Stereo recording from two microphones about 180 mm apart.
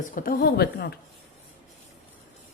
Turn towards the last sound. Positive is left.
turn(degrees=60)  # may be behind; listen again after turning